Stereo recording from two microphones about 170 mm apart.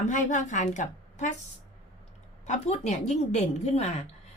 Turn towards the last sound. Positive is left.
turn(degrees=40)  # may be behind; listen again after turning